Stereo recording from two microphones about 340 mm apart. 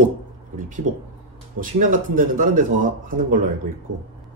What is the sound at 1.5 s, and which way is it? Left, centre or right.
Speech, right.